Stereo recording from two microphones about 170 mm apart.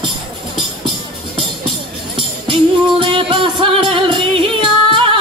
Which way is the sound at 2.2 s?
30° right (ahead or behind).